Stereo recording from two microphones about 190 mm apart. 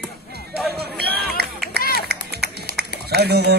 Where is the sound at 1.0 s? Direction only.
55° right (ahead or behind).